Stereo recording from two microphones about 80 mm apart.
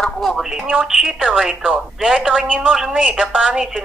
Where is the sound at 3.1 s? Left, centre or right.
Centre.